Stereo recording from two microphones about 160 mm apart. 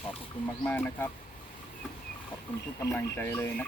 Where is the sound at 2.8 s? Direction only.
15° left (ahead or behind).